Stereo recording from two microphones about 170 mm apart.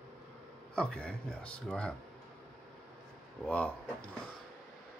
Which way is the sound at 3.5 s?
10° left (ahead or behind).